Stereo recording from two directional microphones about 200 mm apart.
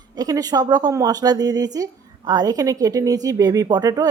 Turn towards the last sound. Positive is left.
turn(degrees=-20)  # may be behind; listen again after turning